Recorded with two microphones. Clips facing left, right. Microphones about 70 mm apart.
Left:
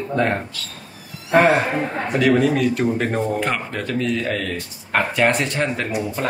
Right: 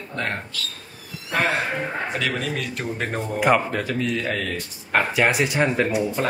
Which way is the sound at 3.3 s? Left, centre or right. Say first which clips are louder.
Right 4 dB; centre.